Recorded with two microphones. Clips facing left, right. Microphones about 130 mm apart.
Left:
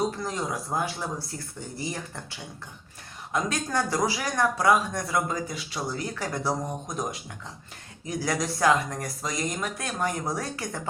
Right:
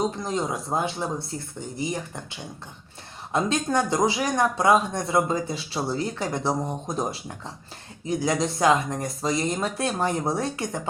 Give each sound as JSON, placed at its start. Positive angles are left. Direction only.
{"t": 0.2, "sound": "speech", "side_deg": -20}